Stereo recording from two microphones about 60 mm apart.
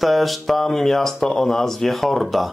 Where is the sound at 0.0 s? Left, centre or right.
Centre.